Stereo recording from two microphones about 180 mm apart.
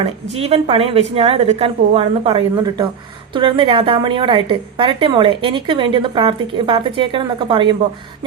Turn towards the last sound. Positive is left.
turn(degrees=-25)  # may be behind; listen again after turning